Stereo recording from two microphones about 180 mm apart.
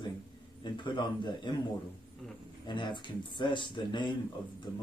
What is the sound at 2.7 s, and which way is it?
Speech, 25° left (ahead or behind).